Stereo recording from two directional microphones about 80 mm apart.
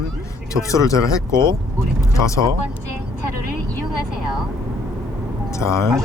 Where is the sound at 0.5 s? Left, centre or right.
Left.